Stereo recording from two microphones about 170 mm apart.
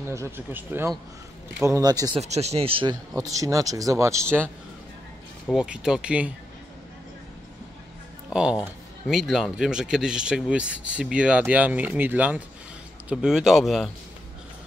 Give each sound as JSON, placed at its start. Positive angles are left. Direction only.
{"t": 0.1, "sound": "speech", "side_deg": -15}
{"t": 2.1, "sound": "speech", "side_deg": -40}
{"t": 3.2, "sound": "speech", "side_deg": -20}
{"t": 5.5, "sound": "speech", "side_deg": -5}
{"t": 8.3, "sound": "speech", "side_deg": -5}